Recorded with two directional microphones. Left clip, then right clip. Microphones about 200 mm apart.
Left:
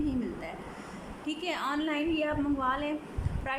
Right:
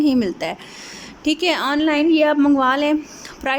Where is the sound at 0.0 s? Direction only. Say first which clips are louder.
Right 15 dB; 50° right (ahead or behind).